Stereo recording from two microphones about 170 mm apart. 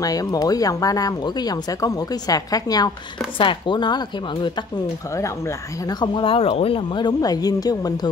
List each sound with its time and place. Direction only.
0.0 s speech: 20° left (ahead or behind)
5.9 s speech: 25° left (ahead or behind)